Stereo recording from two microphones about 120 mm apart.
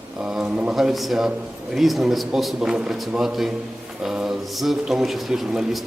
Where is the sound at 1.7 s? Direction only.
Centre (ahead or behind).